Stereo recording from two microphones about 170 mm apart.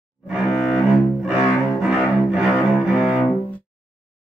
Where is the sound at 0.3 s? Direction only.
5° right (ahead or behind).